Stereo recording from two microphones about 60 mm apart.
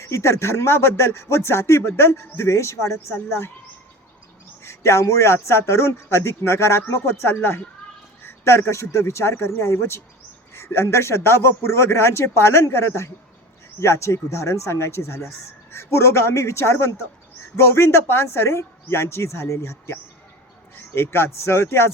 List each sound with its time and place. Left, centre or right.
0.0 s speech: left
4.6 s speech: left